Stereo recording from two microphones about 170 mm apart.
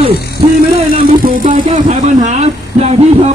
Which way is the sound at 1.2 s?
50° right (ahead or behind).